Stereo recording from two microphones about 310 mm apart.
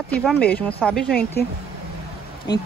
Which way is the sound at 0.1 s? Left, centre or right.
Centre.